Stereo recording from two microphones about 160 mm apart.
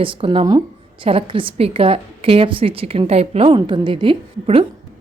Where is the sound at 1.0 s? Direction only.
35° right (ahead or behind).